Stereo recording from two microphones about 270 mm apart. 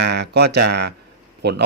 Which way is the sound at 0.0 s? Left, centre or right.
Right.